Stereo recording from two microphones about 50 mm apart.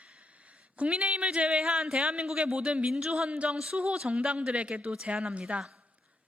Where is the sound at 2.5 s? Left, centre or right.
Right.